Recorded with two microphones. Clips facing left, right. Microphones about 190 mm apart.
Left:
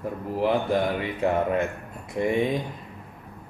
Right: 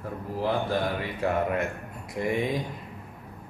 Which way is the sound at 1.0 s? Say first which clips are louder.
Left 3 dB; 25° left (ahead or behind).